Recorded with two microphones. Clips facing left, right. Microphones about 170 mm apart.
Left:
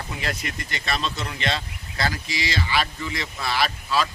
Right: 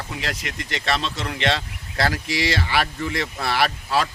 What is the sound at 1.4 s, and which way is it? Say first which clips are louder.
Speech: right 5 dB; 75° right (ahead or behind).